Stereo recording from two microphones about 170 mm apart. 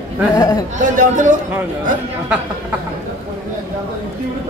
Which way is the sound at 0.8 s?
50° right (ahead or behind).